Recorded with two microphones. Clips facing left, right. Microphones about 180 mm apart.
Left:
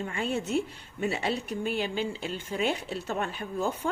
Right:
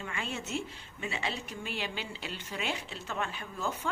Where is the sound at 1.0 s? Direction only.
40° left (ahead or behind).